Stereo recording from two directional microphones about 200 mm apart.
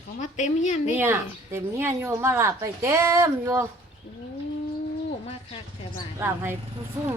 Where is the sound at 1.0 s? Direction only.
10° right (ahead or behind).